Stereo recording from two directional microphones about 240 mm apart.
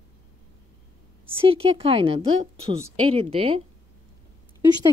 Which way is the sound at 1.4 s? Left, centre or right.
Right.